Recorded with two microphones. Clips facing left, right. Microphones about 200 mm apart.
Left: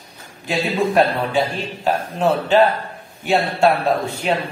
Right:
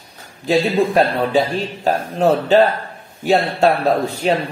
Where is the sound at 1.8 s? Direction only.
40° right (ahead or behind).